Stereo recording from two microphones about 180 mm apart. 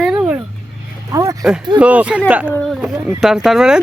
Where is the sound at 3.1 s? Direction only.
Centre (ahead or behind).